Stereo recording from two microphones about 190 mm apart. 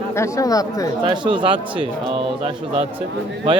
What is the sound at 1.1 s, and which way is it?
A man's voice, 25° right (ahead or behind).